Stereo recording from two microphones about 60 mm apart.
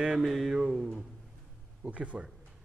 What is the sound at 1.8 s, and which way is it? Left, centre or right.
Speech, right.